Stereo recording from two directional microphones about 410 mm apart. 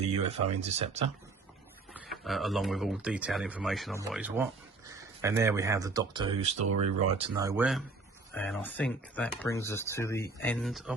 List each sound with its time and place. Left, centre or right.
0.2 s speech: centre
1.9 s speech: centre
6.6 s speech: right
7.2 s speech: centre